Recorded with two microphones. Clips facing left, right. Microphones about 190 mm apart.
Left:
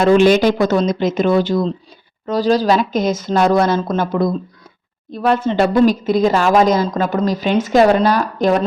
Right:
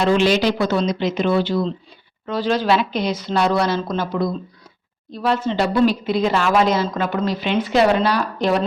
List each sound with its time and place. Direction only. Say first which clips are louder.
0.0 s speech: left 5 dB; 50° left (ahead or behind)